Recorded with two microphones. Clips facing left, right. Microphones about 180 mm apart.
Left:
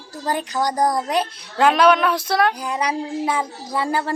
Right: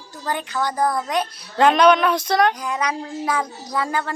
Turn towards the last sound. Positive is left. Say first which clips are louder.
# left 2 dB
turn(degrees=35)  # may be behind; listen again after turning